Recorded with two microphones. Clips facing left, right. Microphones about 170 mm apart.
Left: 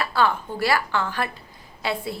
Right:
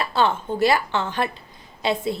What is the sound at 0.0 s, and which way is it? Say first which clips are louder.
A woman's voice: right 1 dB; 20° right (ahead or behind).